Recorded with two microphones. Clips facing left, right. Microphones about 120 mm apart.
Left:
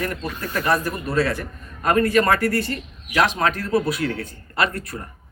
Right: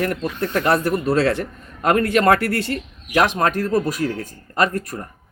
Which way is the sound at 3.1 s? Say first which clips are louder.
Right 2 dB; 45° right (ahead or behind).